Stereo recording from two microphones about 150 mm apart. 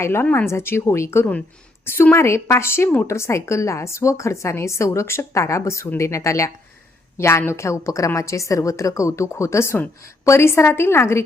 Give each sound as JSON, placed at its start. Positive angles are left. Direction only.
{"t": 0.0, "sound": "a woman's voice", "side_deg": 15}